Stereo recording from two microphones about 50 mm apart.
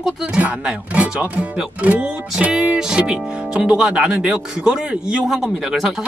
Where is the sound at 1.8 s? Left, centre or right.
Right; by 5.7 s centre.